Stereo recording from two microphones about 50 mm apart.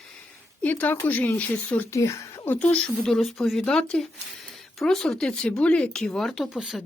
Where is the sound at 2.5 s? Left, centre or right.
Left.